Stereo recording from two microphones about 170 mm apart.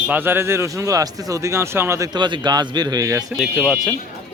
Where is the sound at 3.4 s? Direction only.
Centre (ahead or behind).